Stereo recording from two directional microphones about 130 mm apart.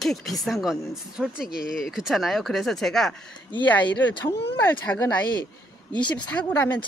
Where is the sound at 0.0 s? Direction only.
Centre (ahead or behind); by 5.0 s 20° left (ahead or behind).